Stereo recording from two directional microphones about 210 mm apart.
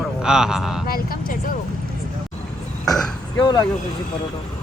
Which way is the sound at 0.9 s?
45° left (ahead or behind).